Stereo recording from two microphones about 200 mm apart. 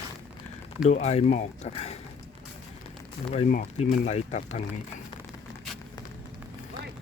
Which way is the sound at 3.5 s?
45° left (ahead or behind).